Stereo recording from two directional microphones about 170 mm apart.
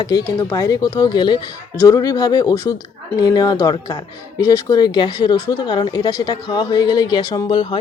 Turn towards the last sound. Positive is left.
turn(degrees=30)  # may be behind; listen again after turning